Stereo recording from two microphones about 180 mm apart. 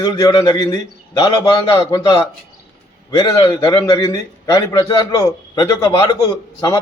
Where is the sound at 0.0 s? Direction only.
20° left (ahead or behind).